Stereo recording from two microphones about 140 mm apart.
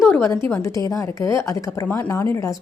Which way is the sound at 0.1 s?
15° left (ahead or behind).